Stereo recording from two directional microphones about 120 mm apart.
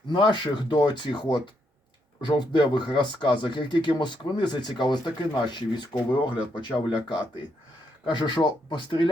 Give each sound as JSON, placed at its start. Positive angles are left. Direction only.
{"t": 0.1, "sound": "speech", "side_deg": 40}